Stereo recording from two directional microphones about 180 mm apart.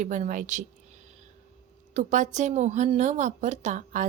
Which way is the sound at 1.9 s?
40° right (ahead or behind).